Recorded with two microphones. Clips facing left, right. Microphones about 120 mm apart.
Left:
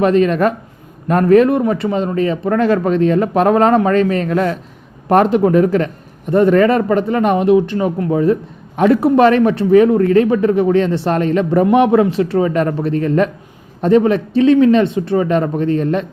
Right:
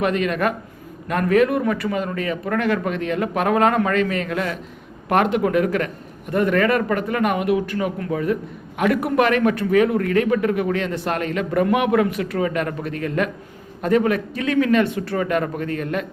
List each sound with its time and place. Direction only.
0.0 s speech: 35° left (ahead or behind)